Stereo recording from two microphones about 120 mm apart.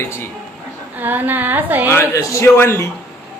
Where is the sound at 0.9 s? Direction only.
15° right (ahead or behind).